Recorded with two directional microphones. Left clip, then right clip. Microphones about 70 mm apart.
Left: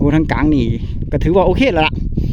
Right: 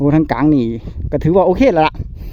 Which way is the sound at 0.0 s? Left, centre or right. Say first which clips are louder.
Right 1 dB; centre.